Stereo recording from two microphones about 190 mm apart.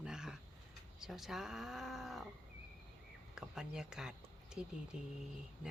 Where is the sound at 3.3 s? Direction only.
5° right (ahead or behind).